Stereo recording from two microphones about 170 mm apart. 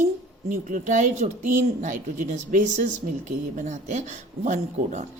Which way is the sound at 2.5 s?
50° right (ahead or behind).